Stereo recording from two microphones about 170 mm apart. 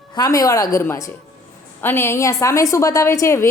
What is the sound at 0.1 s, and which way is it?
A woman's voice, 25° left (ahead or behind).